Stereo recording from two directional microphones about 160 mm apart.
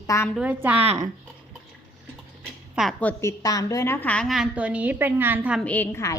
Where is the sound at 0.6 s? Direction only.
10° right (ahead or behind).